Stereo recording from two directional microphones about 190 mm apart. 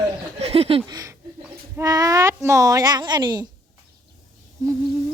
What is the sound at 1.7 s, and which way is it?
Speech, 20° right (ahead or behind).